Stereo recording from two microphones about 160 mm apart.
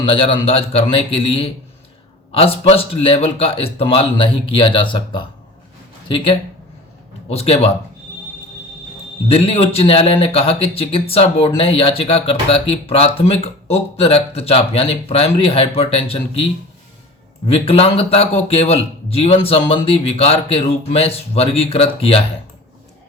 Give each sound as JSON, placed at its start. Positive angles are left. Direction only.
{"t": 0.0, "sound": "speech", "side_deg": 35}
{"t": 9.3, "sound": "speech", "side_deg": 40}